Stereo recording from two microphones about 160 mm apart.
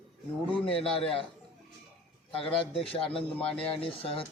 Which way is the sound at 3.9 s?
35° left (ahead or behind).